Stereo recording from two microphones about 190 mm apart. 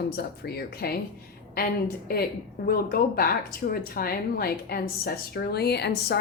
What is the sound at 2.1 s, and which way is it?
A woman's voice, 55° left (ahead or behind).